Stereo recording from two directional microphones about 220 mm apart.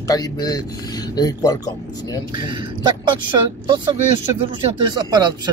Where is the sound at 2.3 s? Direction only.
20° right (ahead or behind).